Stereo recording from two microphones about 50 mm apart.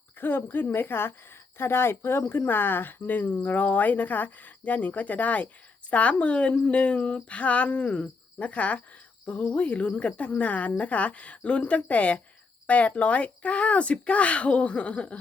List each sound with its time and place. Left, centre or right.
0.2 s a woman's voice: left